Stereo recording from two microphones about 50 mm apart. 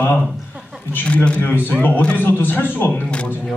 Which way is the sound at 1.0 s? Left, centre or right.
Left.